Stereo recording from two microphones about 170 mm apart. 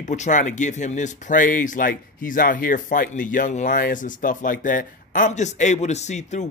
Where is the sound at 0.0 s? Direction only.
45° left (ahead or behind).